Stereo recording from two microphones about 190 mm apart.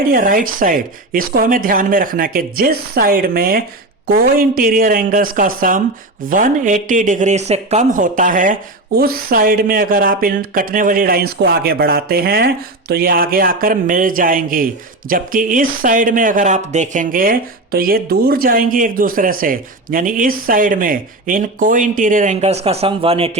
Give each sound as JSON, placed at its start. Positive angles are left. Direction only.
{"t": 0.1, "sound": "speech", "side_deg": -45}